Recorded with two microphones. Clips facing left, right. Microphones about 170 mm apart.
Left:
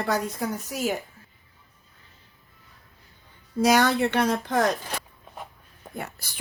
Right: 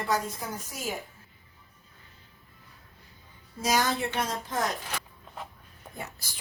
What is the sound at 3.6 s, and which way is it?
Speech, 70° left (ahead or behind).